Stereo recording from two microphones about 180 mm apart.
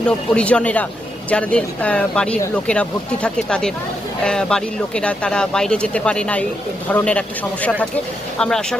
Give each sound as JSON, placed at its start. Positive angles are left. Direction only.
{"t": 0.3, "sound": "speech", "side_deg": 5}